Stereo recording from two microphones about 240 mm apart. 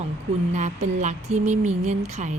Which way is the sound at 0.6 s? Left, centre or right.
Right.